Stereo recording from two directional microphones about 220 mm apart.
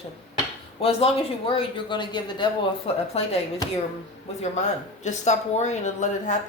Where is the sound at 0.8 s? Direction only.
25° left (ahead or behind).